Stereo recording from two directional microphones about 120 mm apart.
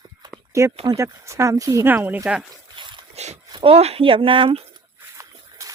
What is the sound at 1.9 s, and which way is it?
Speech, 15° right (ahead or behind).